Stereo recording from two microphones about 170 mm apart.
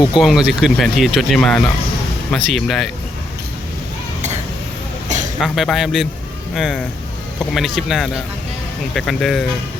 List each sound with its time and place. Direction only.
0.1 s speech: 5° right (ahead or behind)
5.4 s speech: centre (ahead or behind)